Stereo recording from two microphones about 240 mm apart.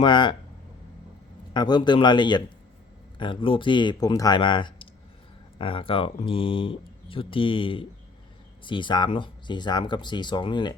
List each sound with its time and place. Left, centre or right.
0.0 s speech: centre
1.5 s speech: centre